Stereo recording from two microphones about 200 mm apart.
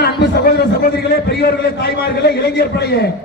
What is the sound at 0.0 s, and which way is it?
A man's voice, 55° left (ahead or behind).